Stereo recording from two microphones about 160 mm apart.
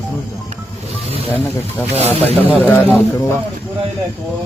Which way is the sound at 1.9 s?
40° right (ahead or behind).